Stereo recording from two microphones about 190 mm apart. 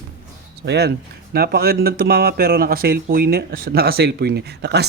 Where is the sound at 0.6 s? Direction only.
60° right (ahead or behind).